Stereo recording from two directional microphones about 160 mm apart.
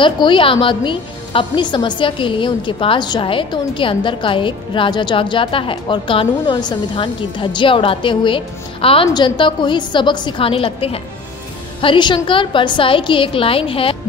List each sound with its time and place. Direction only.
0.0 s a woman's voice: 30° left (ahead or behind)